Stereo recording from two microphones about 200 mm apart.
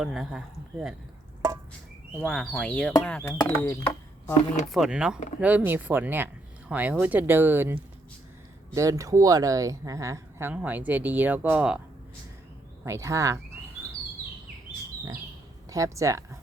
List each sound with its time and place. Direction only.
0.0 s speech: centre (ahead or behind)
2.2 s speech: centre (ahead or behind)
4.7 s speech: 5° right (ahead or behind)
12.8 s speech: 15° right (ahead or behind)
15.7 s speech: 15° right (ahead or behind)